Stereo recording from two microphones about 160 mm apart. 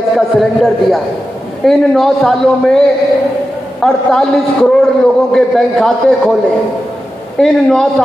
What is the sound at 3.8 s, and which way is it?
A man's voice, centre (ahead or behind).